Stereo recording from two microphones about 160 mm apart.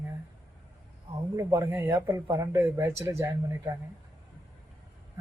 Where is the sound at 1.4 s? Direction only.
20° right (ahead or behind).